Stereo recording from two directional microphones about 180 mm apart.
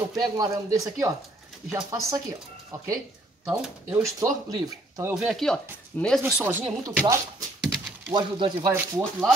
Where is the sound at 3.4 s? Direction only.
10° right (ahead or behind).